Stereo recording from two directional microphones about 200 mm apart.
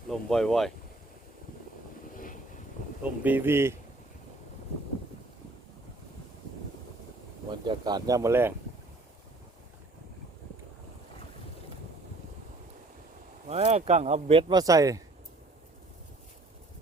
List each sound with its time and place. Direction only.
0.1 s speech: 5° left (ahead or behind)
3.0 s speech: 10° right (ahead or behind)
7.6 s speech: 20° right (ahead or behind)
13.5 s speech: 35° right (ahead or behind); by 15.0 s 15° right (ahead or behind)